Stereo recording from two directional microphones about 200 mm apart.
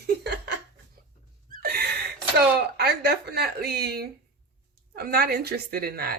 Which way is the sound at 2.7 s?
55° right (ahead or behind).